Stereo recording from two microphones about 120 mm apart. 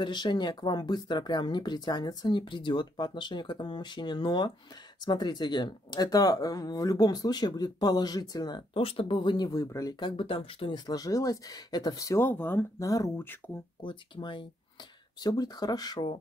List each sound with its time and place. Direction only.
0.0 s speech: 40° left (ahead or behind)
10.9 s speech: 30° left (ahead or behind)
12.8 s speech: 30° left (ahead or behind)
13.7 s speech: 40° left (ahead or behind)